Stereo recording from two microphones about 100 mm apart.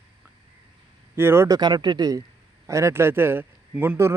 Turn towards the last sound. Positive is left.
turn(degrees=-15)  # may be behind; listen again after turning